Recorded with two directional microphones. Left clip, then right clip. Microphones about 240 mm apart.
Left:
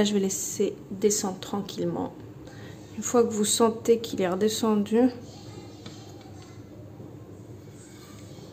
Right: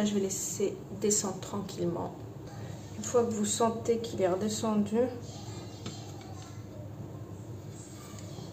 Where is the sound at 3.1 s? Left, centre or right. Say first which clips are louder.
Left 5 dB; left.